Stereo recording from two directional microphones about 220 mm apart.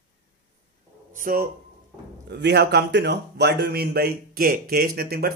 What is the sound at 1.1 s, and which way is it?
A man's voice, 40° right (ahead or behind).